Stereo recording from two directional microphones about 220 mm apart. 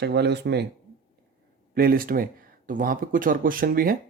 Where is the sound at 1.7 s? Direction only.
40° right (ahead or behind).